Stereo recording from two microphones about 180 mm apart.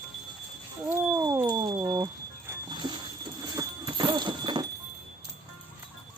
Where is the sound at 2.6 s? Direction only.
25° right (ahead or behind).